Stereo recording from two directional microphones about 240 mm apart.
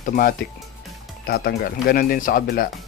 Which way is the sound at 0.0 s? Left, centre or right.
Left.